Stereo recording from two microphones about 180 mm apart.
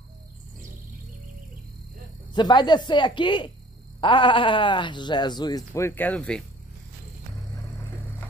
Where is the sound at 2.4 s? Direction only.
25° left (ahead or behind); by 6.4 s 5° left (ahead or behind).